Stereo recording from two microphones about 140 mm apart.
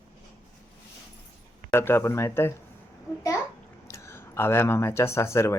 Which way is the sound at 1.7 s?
20° left (ahead or behind).